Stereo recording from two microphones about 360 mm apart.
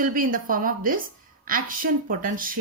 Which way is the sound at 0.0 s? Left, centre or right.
Right.